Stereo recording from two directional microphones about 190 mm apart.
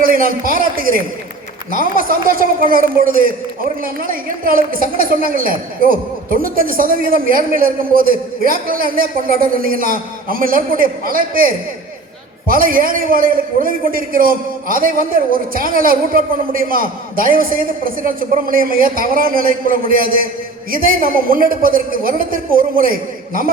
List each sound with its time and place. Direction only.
0.0 s a man's voice: 50° right (ahead or behind)